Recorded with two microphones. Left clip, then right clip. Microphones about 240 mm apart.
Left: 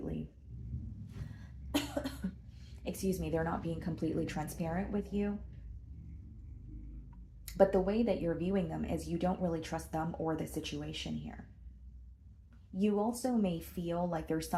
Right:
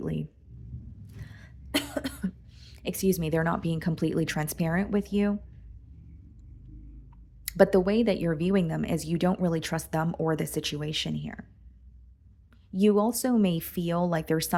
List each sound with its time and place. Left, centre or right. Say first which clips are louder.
1.7 s cough: right 6 dB; right
2.6 s speech: right 9 dB; right
7.4 s speech: right 7 dB; right
12.7 s speech: right 10 dB; right